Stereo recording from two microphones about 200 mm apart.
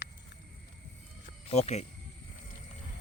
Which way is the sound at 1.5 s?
35° left (ahead or behind).